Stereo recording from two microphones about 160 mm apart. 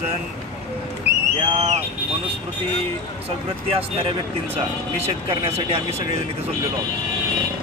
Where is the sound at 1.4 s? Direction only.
35° right (ahead or behind).